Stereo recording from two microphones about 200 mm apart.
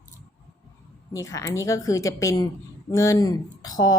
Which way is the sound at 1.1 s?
15° left (ahead or behind).